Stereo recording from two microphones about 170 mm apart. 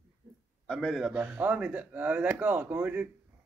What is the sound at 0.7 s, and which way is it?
Speech, centre (ahead or behind).